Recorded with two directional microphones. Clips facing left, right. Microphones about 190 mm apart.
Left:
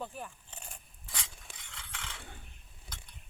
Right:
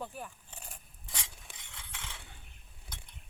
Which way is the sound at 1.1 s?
15° right (ahead or behind).